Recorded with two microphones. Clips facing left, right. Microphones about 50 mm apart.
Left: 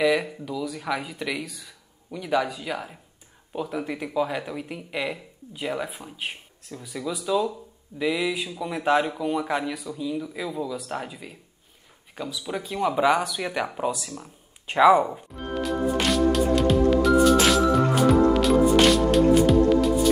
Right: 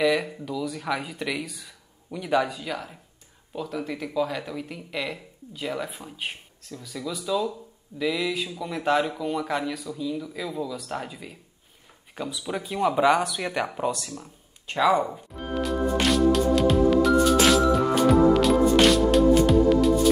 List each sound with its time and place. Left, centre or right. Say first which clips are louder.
0.0 s speech: left 1 dB; centre
6.7 s speech: left 2 dB; centre
14.1 s speech: even; centre
15.3 s music: right 1 dB; centre